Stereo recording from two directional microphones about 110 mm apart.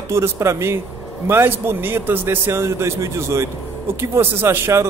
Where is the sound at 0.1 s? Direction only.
25° right (ahead or behind).